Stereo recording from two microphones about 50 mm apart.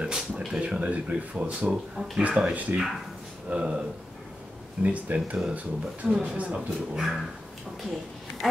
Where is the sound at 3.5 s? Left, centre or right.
Right.